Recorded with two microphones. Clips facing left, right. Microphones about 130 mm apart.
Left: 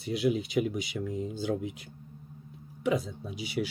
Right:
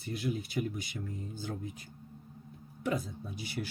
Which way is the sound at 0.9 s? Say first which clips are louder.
Left 8 dB; 90° left.